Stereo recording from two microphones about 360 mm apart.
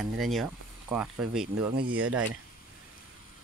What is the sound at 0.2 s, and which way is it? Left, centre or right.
Speech, centre.